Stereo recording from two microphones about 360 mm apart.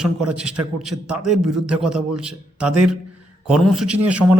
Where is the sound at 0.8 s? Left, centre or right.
Centre.